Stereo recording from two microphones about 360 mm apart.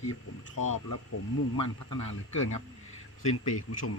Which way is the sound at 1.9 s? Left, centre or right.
Left.